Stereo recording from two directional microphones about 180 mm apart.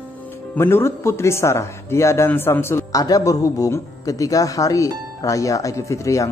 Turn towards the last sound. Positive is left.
turn(degrees=15)  # may be behind; listen again after turning